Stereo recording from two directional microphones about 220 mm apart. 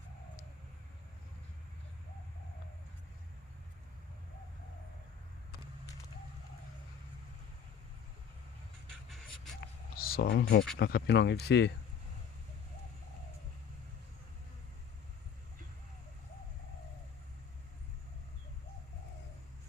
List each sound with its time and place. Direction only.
9.0 s music: centre (ahead or behind)
10.0 s speech: 45° left (ahead or behind)